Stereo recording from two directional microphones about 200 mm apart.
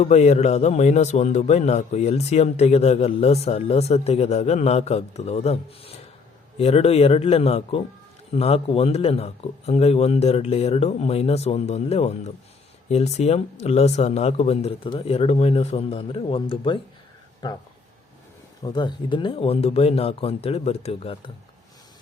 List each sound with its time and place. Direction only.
0.0 s a man's voice: 35° left (ahead or behind)
18.6 s speech: 20° left (ahead or behind)